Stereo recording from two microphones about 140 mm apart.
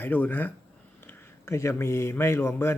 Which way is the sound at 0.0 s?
15° left (ahead or behind).